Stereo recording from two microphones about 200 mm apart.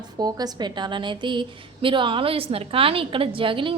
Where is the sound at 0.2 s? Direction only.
20° right (ahead or behind).